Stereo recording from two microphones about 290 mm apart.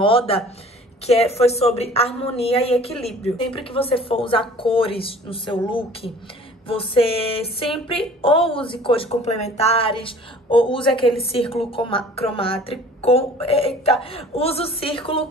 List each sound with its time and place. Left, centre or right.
1.0 s speech: left